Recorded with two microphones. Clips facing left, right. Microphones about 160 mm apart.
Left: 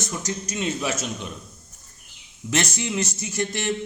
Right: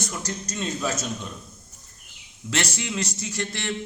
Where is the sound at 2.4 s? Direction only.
20° left (ahead or behind).